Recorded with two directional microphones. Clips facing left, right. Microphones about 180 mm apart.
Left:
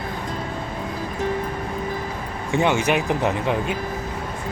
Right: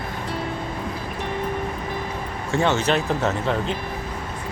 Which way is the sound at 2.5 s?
15° left (ahead or behind).